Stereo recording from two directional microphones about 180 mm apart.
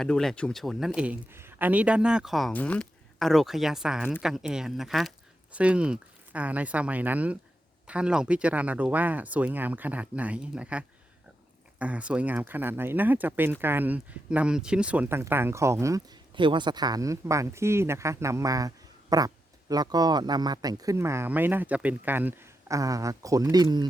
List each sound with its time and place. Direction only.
0.0 s speech: 5° left (ahead or behind); by 23.9 s 25° right (ahead or behind)